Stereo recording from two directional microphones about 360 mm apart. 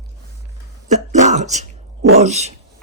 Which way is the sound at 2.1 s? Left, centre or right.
Centre.